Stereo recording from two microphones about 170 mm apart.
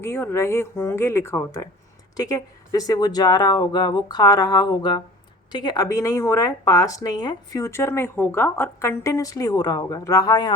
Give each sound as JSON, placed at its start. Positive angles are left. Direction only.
{"t": 0.0, "sound": "speech", "side_deg": 15}